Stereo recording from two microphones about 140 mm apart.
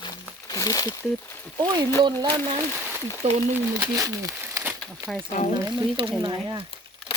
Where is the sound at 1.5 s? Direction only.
30° right (ahead or behind).